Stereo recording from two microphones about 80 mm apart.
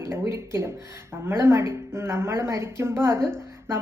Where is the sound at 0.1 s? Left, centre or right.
Right.